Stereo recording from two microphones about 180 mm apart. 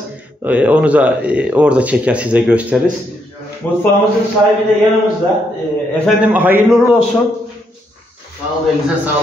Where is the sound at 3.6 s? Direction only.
10° left (ahead or behind).